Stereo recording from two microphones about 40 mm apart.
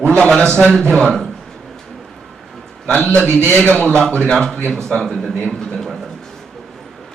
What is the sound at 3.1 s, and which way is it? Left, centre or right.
A man's voice, left.